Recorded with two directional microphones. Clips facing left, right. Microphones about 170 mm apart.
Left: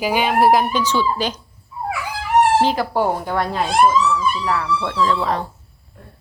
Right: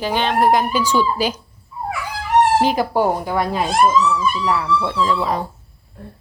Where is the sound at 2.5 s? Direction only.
15° right (ahead or behind).